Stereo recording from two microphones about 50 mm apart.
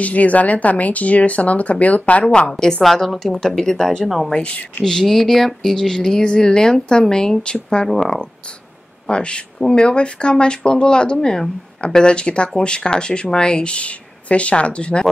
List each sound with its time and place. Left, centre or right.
0.0 s speech: left
2.8 s speech: centre
4.0 s speech: centre
4.3 s speech: left
4.8 s speech: centre